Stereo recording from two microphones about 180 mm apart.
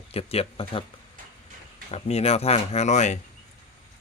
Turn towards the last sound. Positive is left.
turn(degrees=40)  # may be behind; listen again after turning